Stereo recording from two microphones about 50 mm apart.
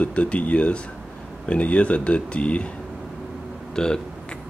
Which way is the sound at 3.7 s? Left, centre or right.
Centre.